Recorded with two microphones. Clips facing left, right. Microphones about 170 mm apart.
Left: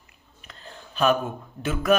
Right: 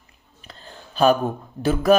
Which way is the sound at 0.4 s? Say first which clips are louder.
Right 1 dB; 30° right (ahead or behind).